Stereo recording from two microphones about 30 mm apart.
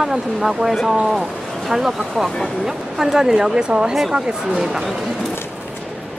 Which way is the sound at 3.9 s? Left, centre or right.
Centre.